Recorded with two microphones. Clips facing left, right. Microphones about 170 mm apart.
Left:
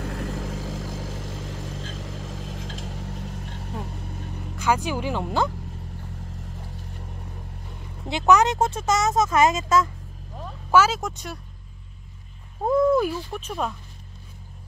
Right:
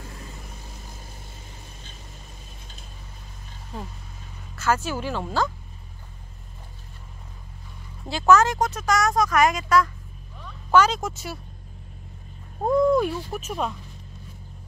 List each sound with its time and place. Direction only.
0.0 s vehicle: 75° left (ahead or behind)
4.6 s speech: 15° left (ahead or behind)
8.1 s speech: 20° left (ahead or behind)
10.7 s speech: 5° left (ahead or behind)
12.6 s speech: 5° left (ahead or behind)